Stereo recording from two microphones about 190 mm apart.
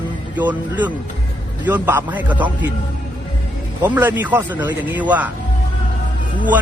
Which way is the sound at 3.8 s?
10° right (ahead or behind).